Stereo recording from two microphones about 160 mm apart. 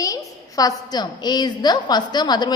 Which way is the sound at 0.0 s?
20° left (ahead or behind).